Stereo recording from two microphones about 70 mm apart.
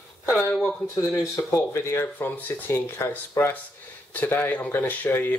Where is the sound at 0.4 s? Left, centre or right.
Centre.